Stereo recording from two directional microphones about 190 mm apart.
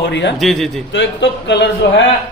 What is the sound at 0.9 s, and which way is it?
Speech, 65° left (ahead or behind).